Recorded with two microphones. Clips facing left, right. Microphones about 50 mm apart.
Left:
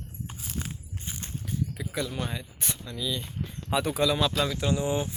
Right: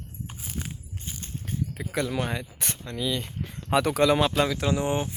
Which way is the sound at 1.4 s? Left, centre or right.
Right.